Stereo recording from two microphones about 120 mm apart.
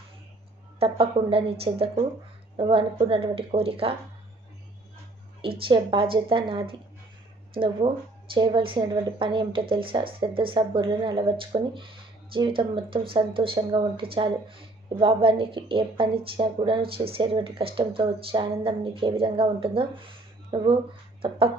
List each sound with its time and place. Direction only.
0.8 s speech: 50° right (ahead or behind)
5.4 s speech: 50° right (ahead or behind)